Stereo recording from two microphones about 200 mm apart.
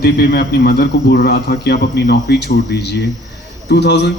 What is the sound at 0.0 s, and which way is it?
Speech, 50° left (ahead or behind).